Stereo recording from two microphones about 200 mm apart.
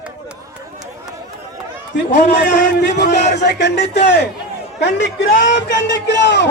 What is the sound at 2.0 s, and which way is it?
Speech, 55° left (ahead or behind).